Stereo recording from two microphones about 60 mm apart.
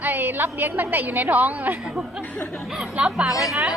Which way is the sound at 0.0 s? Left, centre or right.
Right.